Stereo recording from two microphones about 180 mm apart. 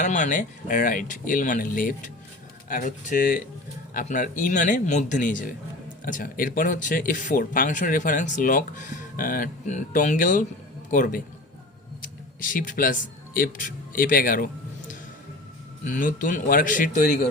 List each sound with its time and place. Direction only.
0.0 s speech: 45° left (ahead or behind)
12.4 s a man's voice: 50° left (ahead or behind)